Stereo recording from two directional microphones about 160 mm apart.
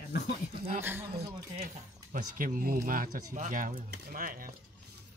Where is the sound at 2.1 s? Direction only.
60° right (ahead or behind).